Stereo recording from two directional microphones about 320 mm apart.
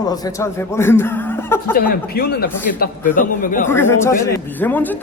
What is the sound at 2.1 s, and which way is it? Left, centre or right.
A man's voice, left.